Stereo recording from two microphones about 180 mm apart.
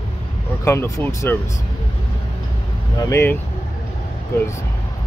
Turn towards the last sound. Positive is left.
turn(degrees=15)  # may be behind; listen again after turning